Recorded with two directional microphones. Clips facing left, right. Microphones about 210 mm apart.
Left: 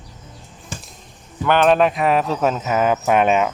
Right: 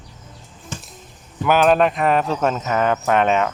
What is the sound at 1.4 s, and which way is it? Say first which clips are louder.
Speech: even; 5° right (ahead or behind).